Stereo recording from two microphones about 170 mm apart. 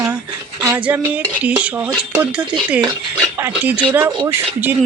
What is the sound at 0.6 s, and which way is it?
Speech, 10° right (ahead or behind).